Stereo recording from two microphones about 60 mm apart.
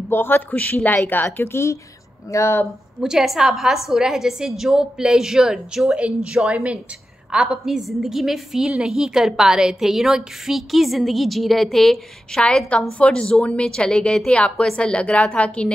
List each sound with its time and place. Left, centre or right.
0.1 s speech: left
3.0 s a woman's voice: centre
5.9 s a woman's voice: centre
7.6 s a woman's voice: centre
12.4 s a woman's voice: centre